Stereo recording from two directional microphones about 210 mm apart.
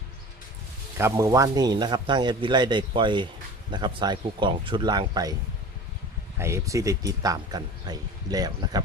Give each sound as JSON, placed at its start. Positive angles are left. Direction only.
{"t": 0.9, "sound": "a man's voice", "side_deg": -15}
{"t": 6.4, "sound": "speech", "side_deg": -15}